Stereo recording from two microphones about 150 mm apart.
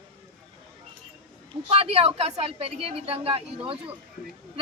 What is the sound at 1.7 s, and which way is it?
Speech, 40° right (ahead or behind).